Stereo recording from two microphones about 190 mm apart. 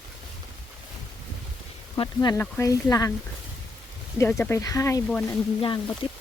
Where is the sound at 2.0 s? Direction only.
20° left (ahead or behind).